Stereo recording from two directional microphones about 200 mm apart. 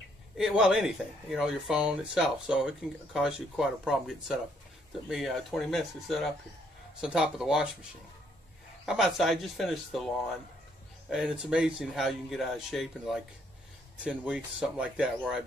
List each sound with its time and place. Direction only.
0.4 s speech: 5° right (ahead or behind)
8.8 s speech: centre (ahead or behind)